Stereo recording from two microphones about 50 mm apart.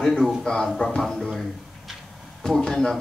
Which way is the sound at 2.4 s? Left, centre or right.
Centre.